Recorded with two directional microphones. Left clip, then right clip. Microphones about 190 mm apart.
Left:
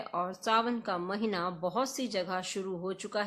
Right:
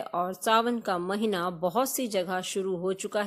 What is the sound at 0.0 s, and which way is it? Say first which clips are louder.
Speech: right 4 dB; 30° right (ahead or behind).